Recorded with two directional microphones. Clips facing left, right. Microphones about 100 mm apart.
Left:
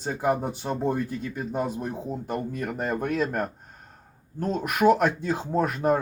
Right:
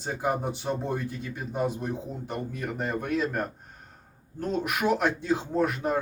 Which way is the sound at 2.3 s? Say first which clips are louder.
Left 2 dB; 45° left (ahead or behind).